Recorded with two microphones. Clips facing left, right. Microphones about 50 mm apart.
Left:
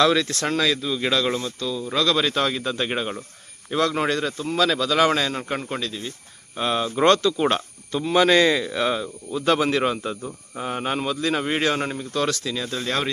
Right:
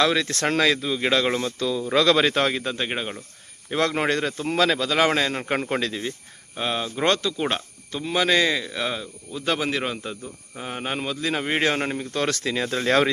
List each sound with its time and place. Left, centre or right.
0.0 s a man's voice: centre
0.3 s speech: right
0.9 s a man's voice: right
1.5 s speech: right
2.5 s a man's voice: right
2.7 s a man's voice: centre
4.1 s a man's voice: right
5.5 s speech: right
5.8 s speech: right
6.6 s a man's voice: centre; by 12.3 s right
12.3 s speech: right